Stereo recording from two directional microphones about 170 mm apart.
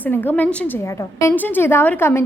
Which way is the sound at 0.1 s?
10° left (ahead or behind).